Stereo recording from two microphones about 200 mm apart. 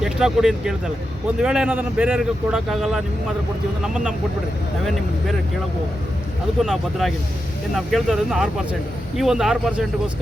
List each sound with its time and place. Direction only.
0.0 s a man's voice: centre (ahead or behind)
6.6 s a man's voice: centre (ahead or behind)